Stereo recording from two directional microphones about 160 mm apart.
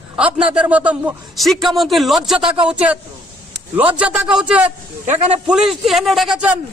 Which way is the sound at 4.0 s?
5° right (ahead or behind).